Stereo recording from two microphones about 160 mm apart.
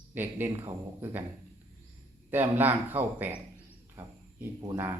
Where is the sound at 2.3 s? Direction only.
10° right (ahead or behind).